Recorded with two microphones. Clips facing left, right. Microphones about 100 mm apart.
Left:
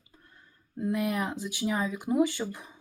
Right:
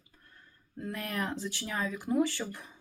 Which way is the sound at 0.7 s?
15° left (ahead or behind).